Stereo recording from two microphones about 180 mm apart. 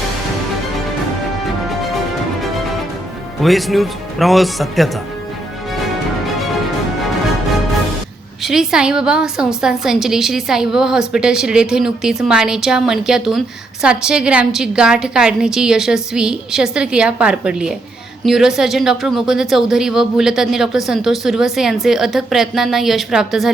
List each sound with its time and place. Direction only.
3.4 s speech: centre (ahead or behind)
8.4 s speech: 5° right (ahead or behind)